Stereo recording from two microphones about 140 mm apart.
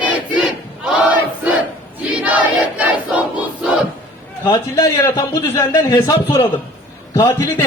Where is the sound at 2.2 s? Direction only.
10° right (ahead or behind).